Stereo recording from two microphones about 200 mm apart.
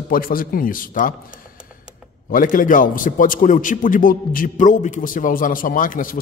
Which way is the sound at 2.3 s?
40° left (ahead or behind).